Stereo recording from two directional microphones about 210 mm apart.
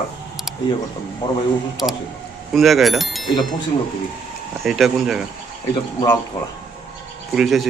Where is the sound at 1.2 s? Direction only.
20° left (ahead or behind).